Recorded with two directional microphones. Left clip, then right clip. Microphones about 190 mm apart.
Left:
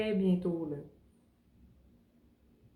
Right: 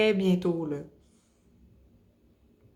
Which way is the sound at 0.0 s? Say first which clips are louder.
Right 8 dB; 40° right (ahead or behind).